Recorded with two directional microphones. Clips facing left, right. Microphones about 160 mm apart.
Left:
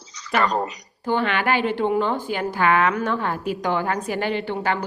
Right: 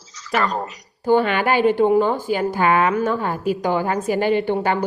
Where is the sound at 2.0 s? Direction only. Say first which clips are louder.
Right 4 dB; 10° right (ahead or behind).